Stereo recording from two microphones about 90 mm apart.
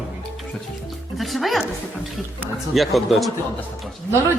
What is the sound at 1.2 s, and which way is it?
Speech, centre (ahead or behind).